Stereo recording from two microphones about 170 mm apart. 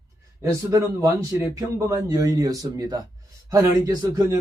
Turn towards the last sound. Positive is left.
turn(degrees=-20)  # may be behind; listen again after turning